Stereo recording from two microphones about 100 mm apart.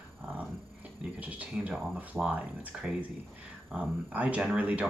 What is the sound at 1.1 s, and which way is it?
Speech, 15° right (ahead or behind).